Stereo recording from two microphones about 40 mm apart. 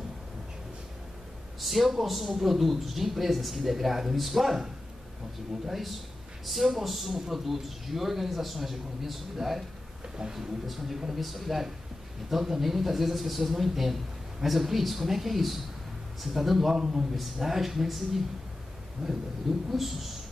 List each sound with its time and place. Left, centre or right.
1.6 s a man's voice: centre
5.7 s a man's voice: centre
19.0 s a sound: right
19.7 s a man's voice: centre